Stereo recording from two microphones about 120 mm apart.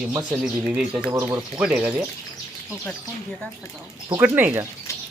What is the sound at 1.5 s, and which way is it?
Speech, 15° right (ahead or behind).